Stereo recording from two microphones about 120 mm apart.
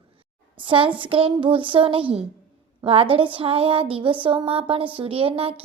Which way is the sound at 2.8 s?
50° right (ahead or behind).